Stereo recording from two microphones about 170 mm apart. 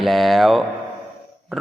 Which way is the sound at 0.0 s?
Centre (ahead or behind).